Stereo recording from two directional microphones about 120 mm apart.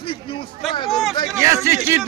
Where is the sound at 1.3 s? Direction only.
25° right (ahead or behind).